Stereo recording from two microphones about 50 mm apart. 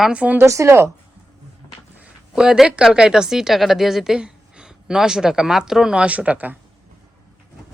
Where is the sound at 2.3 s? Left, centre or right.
Centre.